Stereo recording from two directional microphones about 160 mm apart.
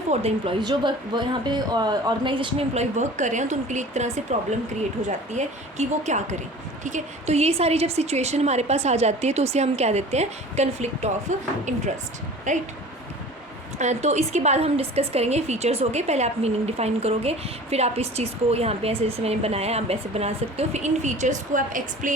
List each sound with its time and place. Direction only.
0.1 s a woman's voice: 40° right (ahead or behind)
0.6 s a woman's voice: 25° right (ahead or behind); by 12.6 s 50° right (ahead or behind)
13.7 s a woman's voice: 45° right (ahead or behind)